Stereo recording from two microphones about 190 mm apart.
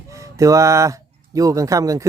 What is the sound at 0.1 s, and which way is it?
Speech, 15° right (ahead or behind).